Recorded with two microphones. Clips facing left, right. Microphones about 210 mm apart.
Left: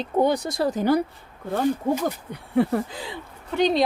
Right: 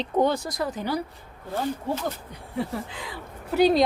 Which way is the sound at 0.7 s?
45° left (ahead or behind).